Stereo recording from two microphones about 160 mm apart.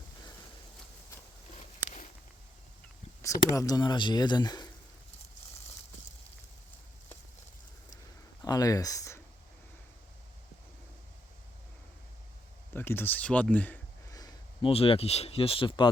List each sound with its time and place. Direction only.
3.2 s speech: 20° left (ahead or behind)
8.4 s speech: 25° left (ahead or behind)
12.7 s speech: 15° left (ahead or behind)
14.1 s a sound: 25° left (ahead or behind)
14.7 s speech: 35° left (ahead or behind)